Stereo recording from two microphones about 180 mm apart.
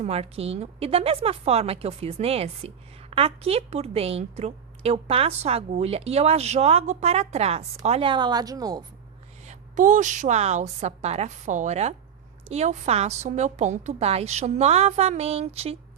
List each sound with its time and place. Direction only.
0.0 s a woman's voice: 35° right (ahead or behind)
9.5 s a woman's voice: 45° right (ahead or behind)